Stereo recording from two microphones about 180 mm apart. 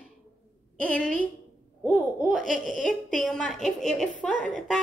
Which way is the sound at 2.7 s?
Centre (ahead or behind).